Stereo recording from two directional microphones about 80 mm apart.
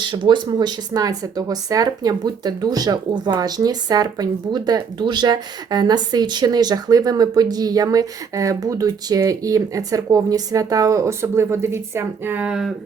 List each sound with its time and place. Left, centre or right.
0.0 s speech: right
0.6 s speech: right
12.5 s speech: centre